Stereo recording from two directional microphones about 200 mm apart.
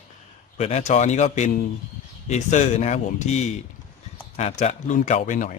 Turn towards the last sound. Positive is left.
turn(degrees=40)  # may be behind; listen again after turning